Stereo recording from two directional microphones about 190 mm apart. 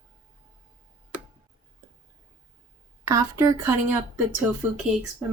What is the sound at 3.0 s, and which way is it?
Speech, 15° right (ahead or behind).